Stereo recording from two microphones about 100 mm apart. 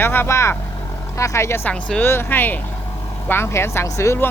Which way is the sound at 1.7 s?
10° left (ahead or behind).